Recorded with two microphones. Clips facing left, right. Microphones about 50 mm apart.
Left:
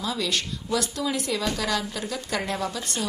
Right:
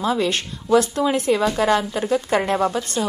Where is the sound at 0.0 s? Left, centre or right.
Right.